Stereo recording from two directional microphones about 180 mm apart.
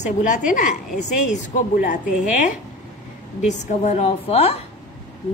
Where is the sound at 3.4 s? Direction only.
40° left (ahead or behind).